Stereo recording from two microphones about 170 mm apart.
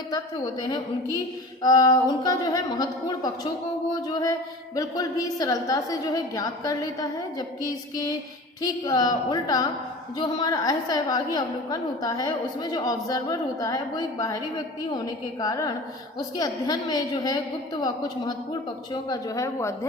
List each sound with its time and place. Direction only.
1.6 s a woman's voice: 25° left (ahead or behind)
8.6 s a woman's voice: 25° left (ahead or behind)